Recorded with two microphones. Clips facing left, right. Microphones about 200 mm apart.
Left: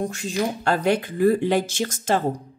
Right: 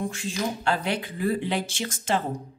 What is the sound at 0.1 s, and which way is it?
Speech, 40° left (ahead or behind).